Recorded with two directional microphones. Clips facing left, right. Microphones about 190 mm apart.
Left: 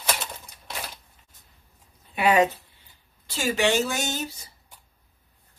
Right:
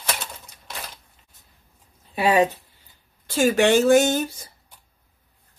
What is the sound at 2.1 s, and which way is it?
Speech, 30° right (ahead or behind).